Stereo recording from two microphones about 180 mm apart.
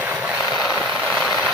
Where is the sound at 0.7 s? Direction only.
5° left (ahead or behind).